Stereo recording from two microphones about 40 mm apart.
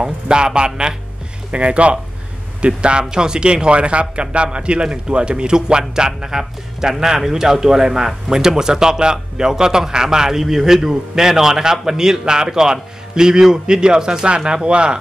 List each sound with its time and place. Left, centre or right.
0.0 s a man's voice: centre